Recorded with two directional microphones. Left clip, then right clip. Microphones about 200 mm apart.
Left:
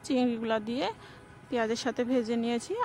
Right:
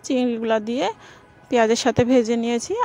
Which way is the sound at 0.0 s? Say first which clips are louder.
Right 7 dB; 25° right (ahead or behind).